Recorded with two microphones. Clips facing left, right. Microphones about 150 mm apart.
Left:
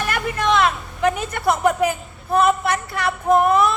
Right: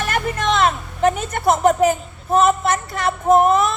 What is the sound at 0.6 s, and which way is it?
A woman's voice, 45° right (ahead or behind).